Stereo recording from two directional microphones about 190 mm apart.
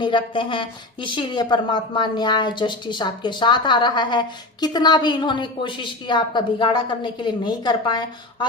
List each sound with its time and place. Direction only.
0.0 s speech: 25° left (ahead or behind)